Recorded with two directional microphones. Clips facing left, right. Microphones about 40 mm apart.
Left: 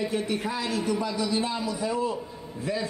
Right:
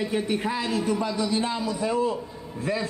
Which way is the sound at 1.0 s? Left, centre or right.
Right.